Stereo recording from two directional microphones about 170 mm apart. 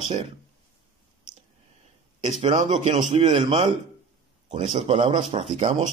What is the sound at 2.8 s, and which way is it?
Speech, 35° right (ahead or behind).